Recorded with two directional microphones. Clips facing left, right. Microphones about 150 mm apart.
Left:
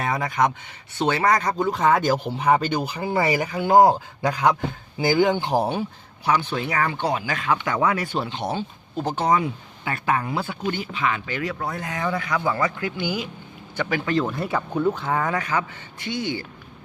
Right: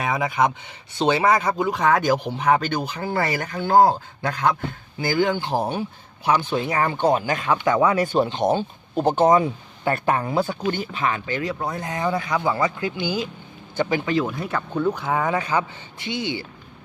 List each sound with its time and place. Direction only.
0.2 s speech: 15° right (ahead or behind); by 5.5 s 20° left (ahead or behind)
5.5 s speech: 5° left (ahead or behind)
6.2 s speech: 20° right (ahead or behind)
7.0 s speech: 45° right (ahead or behind); by 14.3 s 15° right (ahead or behind)
14.3 s speech: centre (ahead or behind)
15.3 s speech: 25° right (ahead or behind)